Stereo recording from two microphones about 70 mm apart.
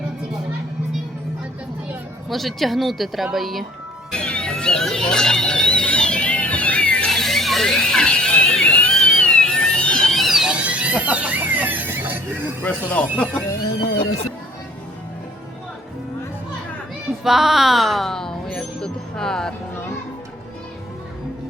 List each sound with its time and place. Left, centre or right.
2.3 s speech: centre
4.1 s music: centre
7.1 s music: centre
8.9 s a sound: centre
10.2 s a sound: centre; by 12.5 s right
12.6 s speech: centre
17.2 s music: centre